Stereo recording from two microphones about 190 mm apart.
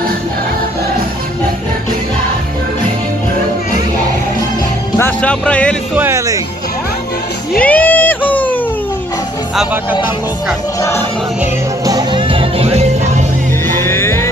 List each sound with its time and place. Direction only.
4.9 s speech: 10° left (ahead or behind)
5.9 s speech: 15° right (ahead or behind)
7.6 s a sound: 10° left (ahead or behind)
10.8 s music: 15° left (ahead or behind)
11.8 s music: 20° right (ahead or behind)
13.7 s music: 15° left (ahead or behind)